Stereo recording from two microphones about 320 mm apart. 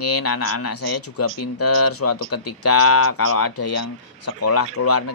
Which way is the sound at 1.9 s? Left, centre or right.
Left.